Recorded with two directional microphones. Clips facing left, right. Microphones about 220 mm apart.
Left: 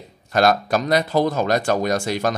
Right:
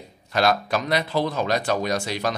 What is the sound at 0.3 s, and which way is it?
Speech, 45° left (ahead or behind).